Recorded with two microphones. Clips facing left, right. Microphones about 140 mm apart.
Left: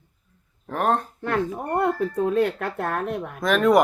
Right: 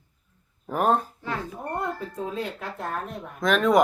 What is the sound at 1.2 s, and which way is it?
Speech, 65° left (ahead or behind).